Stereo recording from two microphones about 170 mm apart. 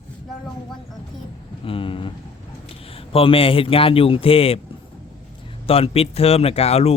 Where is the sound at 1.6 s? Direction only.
30° left (ahead or behind).